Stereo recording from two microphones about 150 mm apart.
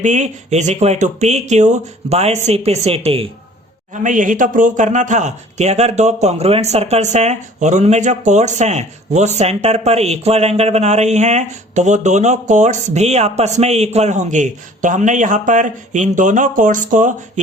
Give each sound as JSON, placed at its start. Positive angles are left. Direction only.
{"t": 0.0, "sound": "a man's voice", "side_deg": -55}
{"t": 4.0, "sound": "a man's voice", "side_deg": -60}